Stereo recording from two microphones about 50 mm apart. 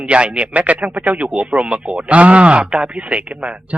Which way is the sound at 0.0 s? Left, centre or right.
Right.